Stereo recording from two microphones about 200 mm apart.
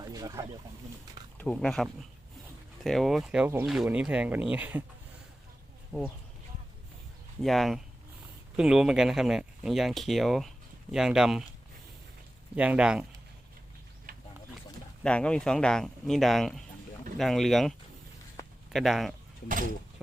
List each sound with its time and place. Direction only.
0.1 s wild animals: 20° right (ahead or behind)
1.4 s speech: 5° left (ahead or behind)
7.4 s speech: centre (ahead or behind)
12.5 s speech: 5° right (ahead or behind)
14.1 s a sound: 45° right (ahead or behind)
15.0 s speech: 5° left (ahead or behind)